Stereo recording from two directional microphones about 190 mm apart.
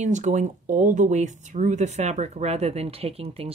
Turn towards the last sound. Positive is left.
turn(degrees=-30)  # may be behind; listen again after turning